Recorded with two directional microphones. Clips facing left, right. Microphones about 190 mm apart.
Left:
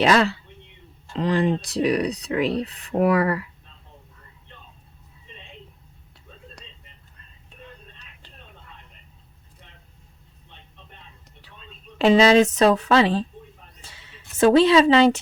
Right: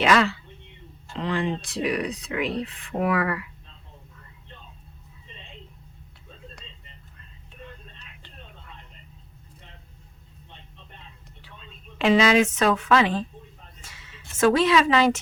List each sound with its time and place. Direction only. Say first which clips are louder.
0.0 s speech: left 2 dB; 35° left (ahead or behind)
11.9 s speech: left 4 dB; 35° left (ahead or behind)
13.8 s a sound: left 1 dB; 30° left (ahead or behind)